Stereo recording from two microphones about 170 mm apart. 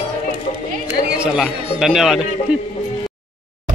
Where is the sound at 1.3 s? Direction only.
5° right (ahead or behind).